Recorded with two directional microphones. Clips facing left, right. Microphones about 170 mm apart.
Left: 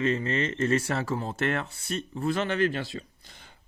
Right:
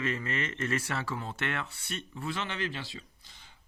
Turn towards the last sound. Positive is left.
turn(degrees=50)  # may be behind; listen again after turning